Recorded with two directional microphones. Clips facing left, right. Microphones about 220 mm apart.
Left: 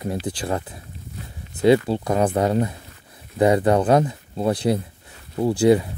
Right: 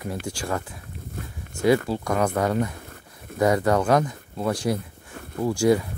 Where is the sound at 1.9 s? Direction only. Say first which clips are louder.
Left 3 dB; 30° left (ahead or behind).